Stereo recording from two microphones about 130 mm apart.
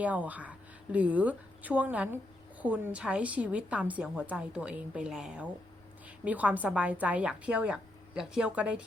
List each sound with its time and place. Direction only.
0.0 s a woman's voice: 10° right (ahead or behind)